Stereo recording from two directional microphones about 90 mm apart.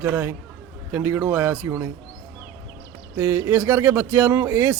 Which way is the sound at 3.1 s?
25° right (ahead or behind).